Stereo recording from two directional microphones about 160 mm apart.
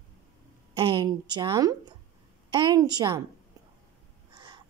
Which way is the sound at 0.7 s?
30° right (ahead or behind).